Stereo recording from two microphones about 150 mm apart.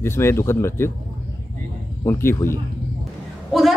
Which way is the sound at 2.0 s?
20° left (ahead or behind).